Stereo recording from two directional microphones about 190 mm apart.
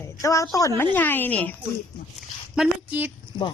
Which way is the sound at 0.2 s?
15° left (ahead or behind).